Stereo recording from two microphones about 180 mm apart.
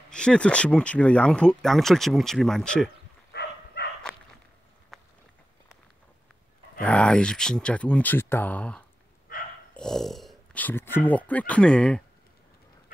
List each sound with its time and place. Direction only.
0.1 s speech: 5° left (ahead or behind)
3.3 s dog: 65° left (ahead or behind)
4.9 s run: centre (ahead or behind)
6.8 s speech: 5° left (ahead or behind)